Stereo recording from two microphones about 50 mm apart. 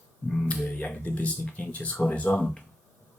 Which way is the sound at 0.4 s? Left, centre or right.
Left.